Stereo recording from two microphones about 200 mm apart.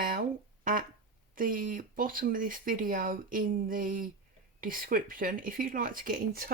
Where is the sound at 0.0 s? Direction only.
45° right (ahead or behind).